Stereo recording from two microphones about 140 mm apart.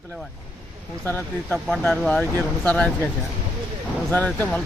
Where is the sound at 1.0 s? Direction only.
15° left (ahead or behind).